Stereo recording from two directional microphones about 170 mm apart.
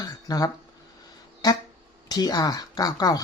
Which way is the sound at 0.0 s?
20° left (ahead or behind).